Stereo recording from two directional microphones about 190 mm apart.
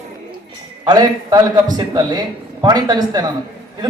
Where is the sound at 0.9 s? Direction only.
20° right (ahead or behind).